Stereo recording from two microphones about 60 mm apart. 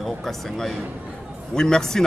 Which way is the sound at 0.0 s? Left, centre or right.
Centre.